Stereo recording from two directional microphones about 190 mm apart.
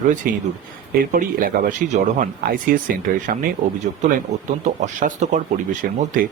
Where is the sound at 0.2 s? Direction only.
50° right (ahead or behind).